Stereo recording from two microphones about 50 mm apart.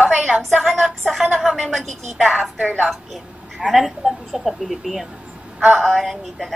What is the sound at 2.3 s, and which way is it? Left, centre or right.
Speech, right.